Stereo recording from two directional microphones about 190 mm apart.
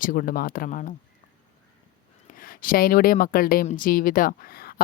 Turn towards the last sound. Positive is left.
turn(degrees=50)  # may be behind; listen again after turning